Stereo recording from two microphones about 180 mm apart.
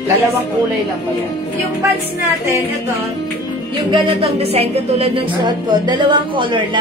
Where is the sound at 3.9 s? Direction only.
30° right (ahead or behind).